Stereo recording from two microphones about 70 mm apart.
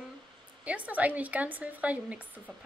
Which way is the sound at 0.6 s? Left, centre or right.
Right.